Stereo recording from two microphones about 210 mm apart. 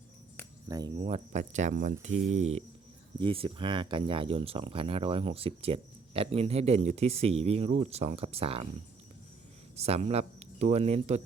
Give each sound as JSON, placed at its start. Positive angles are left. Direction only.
{"t": 0.7, "sound": "speech", "side_deg": -20}
{"t": 9.7, "sound": "speech", "side_deg": -30}